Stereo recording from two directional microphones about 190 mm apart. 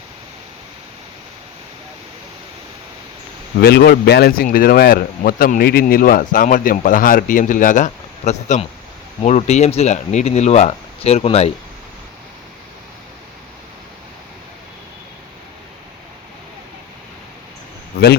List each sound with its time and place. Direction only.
3.6 s speech: 55° left (ahead or behind); by 11.5 s 35° left (ahead or behind)